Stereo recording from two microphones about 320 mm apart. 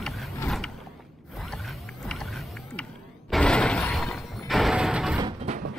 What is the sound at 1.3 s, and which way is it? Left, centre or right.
Zipper, centre.